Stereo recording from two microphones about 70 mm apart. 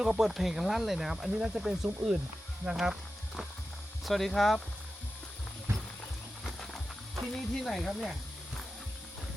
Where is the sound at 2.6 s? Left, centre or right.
Centre.